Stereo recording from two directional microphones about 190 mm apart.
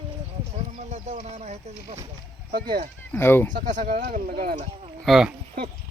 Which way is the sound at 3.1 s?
10° left (ahead or behind).